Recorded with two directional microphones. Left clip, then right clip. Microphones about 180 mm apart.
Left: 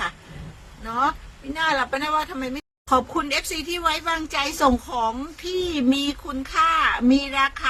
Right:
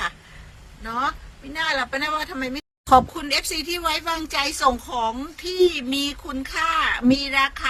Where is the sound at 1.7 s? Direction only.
50° right (ahead or behind).